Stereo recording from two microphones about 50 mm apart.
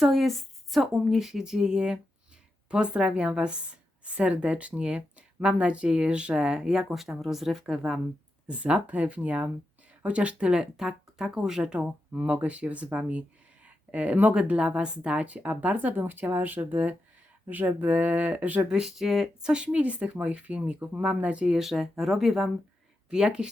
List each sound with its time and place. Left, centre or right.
0.0 s speech: centre
8.4 s speech: right
14.3 s speech: centre
18.7 s speech: centre
19.6 s speech: right
21.5 s speech: centre
23.0 s speech: centre